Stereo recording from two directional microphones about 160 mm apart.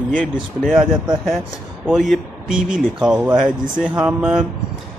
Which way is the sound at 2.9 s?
5° right (ahead or behind).